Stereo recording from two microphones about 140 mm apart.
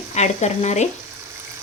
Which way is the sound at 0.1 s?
55° left (ahead or behind).